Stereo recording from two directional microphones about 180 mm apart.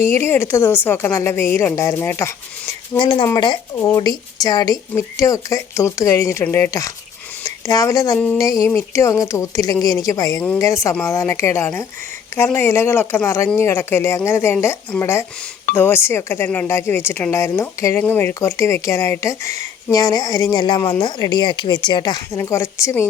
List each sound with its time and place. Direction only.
0.0 s speech: 15° left (ahead or behind)
3.0 s a woman's voice: 25° left (ahead or behind)